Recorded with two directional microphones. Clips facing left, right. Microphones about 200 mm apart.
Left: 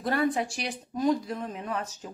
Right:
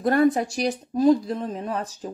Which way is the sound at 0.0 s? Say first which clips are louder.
Right 7 dB; 45° right (ahead or behind).